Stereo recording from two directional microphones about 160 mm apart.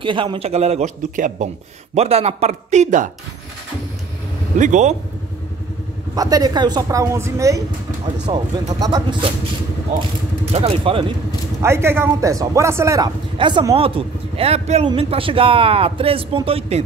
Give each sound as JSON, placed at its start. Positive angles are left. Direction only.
{"t": 0.0, "sound": "a man's voice", "side_deg": -30}
{"t": 2.0, "sound": "a man's voice", "side_deg": -40}
{"t": 4.6, "sound": "a man's voice", "side_deg": -50}
{"t": 6.1, "sound": "speech", "side_deg": -25}
{"t": 10.5, "sound": "speech", "side_deg": -35}
{"t": 11.6, "sound": "speech", "side_deg": -15}
{"t": 13.4, "sound": "speech", "side_deg": -30}